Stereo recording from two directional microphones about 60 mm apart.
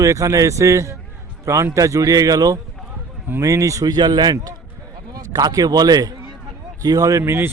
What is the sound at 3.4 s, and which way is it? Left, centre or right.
Speech, right.